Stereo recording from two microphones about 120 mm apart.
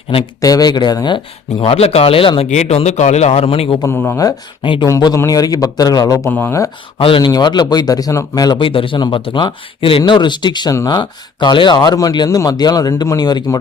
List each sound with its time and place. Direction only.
0.4 s a man's voice: 30° left (ahead or behind); by 2.5 s 50° left (ahead or behind)
2.5 s a man's voice: 65° left (ahead or behind); by 3.8 s 45° left (ahead or behind)
3.8 s speech: 20° left (ahead or behind)
4.3 s a man's voice: 40° left (ahead or behind)
4.9 s a man's voice: 30° left (ahead or behind)
6.3 s speech: 20° left (ahead or behind)
7.0 s a man's voice: 45° left (ahead or behind)